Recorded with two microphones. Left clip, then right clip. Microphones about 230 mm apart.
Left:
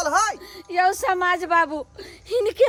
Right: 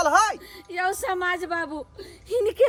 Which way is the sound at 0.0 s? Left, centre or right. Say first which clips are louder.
Right 1 dB; right.